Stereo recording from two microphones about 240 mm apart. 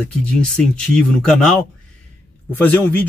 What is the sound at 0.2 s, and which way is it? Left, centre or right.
Speech, centre.